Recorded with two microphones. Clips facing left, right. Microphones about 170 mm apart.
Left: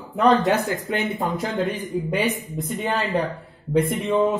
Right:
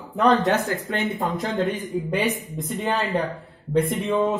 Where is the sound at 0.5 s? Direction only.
15° left (ahead or behind).